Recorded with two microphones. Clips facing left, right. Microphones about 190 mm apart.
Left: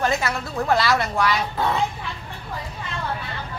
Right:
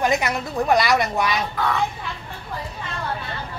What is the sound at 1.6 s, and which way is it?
Speech, 25° left (ahead or behind).